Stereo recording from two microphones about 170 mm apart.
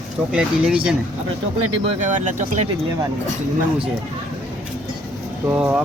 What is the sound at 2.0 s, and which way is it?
Speech, 45° right (ahead or behind).